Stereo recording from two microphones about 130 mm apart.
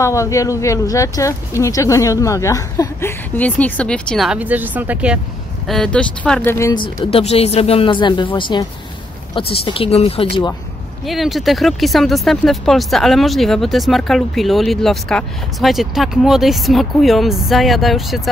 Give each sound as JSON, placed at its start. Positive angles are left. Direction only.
{"t": 0.0, "sound": "speech", "side_deg": 25}
{"t": 4.3, "sound": "speech", "side_deg": -10}
{"t": 5.7, "sound": "speech", "side_deg": 5}
{"t": 6.7, "sound": "speech", "side_deg": 35}
{"t": 7.1, "sound": "speech", "side_deg": 50}
{"t": 11.1, "sound": "speech", "side_deg": 0}